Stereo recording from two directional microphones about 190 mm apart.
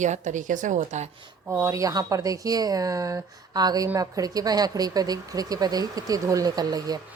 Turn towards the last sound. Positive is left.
turn(degrees=-20)  # may be behind; listen again after turning